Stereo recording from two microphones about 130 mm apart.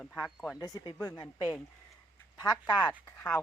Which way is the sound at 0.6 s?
30° left (ahead or behind).